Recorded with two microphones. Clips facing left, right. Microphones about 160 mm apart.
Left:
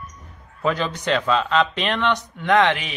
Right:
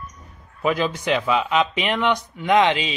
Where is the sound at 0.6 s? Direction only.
10° right (ahead or behind).